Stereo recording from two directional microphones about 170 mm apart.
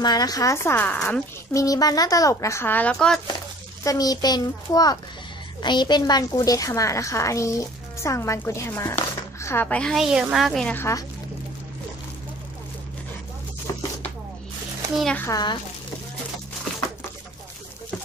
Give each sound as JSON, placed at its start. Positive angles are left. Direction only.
{"t": 0.0, "sound": "speech", "side_deg": 25}
{"t": 3.8, "sound": "a woman's voice", "side_deg": 20}
{"t": 15.0, "sound": "a child's voice", "side_deg": 5}
{"t": 15.2, "sound": "a woman's voice", "side_deg": 25}